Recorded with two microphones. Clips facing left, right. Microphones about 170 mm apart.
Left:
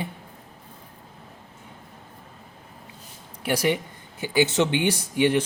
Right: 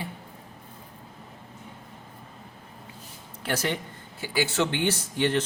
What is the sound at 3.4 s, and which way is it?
Speech, 15° left (ahead or behind).